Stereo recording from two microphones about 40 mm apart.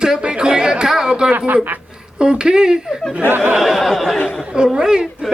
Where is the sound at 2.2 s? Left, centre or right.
Right.